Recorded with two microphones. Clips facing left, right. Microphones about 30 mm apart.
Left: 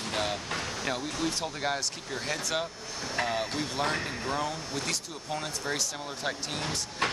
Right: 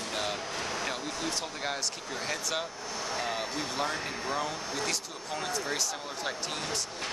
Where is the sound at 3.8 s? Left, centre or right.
Centre.